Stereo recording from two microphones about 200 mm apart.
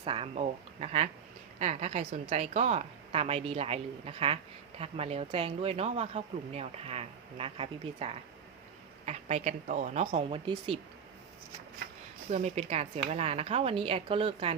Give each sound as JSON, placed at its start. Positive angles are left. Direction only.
{"t": 0.0, "sound": "speech", "side_deg": -30}
{"t": 12.3, "sound": "speech", "side_deg": -35}